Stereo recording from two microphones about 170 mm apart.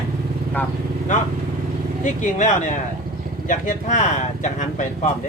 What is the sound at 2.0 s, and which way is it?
Speech, 50° left (ahead or behind).